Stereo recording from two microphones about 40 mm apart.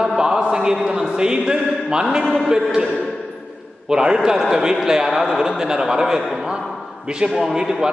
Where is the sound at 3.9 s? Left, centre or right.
Centre.